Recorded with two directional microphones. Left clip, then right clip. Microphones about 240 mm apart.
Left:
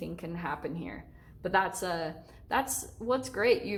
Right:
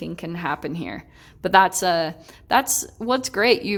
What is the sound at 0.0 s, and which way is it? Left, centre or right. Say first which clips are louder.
A woman's voice: right 9 dB; right.